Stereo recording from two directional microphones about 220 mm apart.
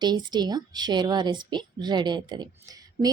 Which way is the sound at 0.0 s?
20° right (ahead or behind).